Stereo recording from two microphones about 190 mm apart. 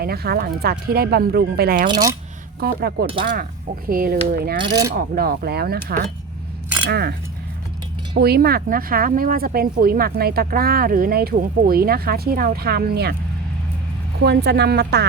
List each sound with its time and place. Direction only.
0.0 s speech: 55° right (ahead or behind)
1.9 s speech: 20° right (ahead or behind)
2.6 s speech: 55° right (ahead or behind)
4.6 s speech: 20° right (ahead or behind)
4.9 s speech: 50° right (ahead or behind)
8.2 s speech: 55° right (ahead or behind)
14.3 s speech: 60° right (ahead or behind)